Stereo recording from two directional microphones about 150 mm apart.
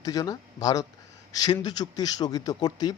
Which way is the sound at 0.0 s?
25° left (ahead or behind).